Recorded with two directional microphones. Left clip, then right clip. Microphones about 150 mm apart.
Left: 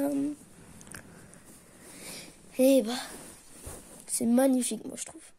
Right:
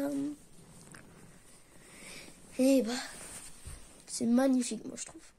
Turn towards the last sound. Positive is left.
turn(degrees=60)  # may be behind; listen again after turning